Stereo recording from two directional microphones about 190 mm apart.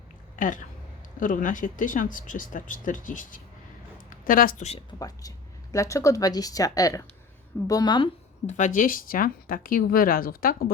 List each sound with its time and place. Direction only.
0.3 s speech: 45° left (ahead or behind)
4.9 s speech: 20° left (ahead or behind)
8.4 s speech: 40° left (ahead or behind)